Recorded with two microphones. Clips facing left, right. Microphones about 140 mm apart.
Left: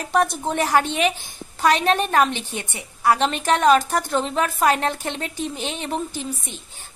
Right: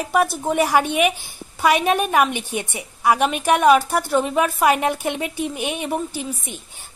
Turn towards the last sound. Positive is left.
turn(degrees=-10)  # may be behind; listen again after turning